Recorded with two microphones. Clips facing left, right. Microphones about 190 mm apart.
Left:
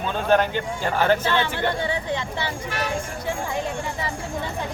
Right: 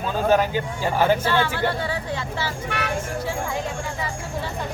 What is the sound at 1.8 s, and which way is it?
Speech, 20° left (ahead or behind).